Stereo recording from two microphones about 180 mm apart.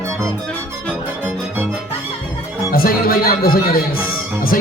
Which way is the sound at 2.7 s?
55° left (ahead or behind).